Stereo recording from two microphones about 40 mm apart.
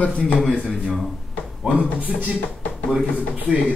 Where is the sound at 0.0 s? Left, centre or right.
Left.